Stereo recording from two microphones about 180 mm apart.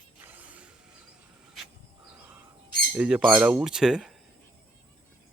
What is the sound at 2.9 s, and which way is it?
Speech, 5° right (ahead or behind).